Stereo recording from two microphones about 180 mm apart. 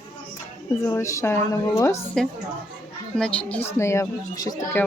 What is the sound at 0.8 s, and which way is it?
Speech, 15° left (ahead or behind).